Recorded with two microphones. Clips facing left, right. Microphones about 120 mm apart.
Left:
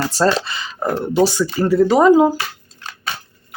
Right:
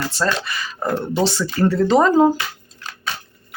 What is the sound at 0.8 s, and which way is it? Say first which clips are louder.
Speech: left 4 dB; 10° left (ahead or behind).